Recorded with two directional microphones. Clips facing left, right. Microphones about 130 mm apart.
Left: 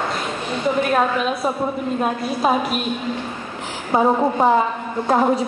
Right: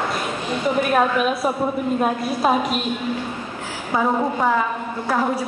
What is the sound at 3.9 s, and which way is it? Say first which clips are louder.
A woman's voice: left 4 dB; 30° left (ahead or behind).